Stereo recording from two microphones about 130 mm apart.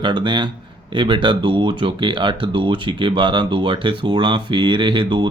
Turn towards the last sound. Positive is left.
turn(degrees=-40)  # may be behind; listen again after turning